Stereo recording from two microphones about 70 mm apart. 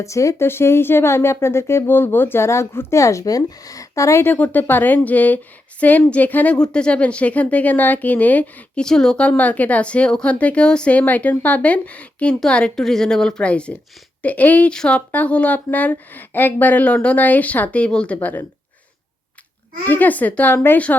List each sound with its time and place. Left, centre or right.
0.0 s speech: left
0.4 s speech: left
4.2 s speech: left
8.8 s a woman's voice: centre
9.3 s a woman's voice: left
19.8 s speech: left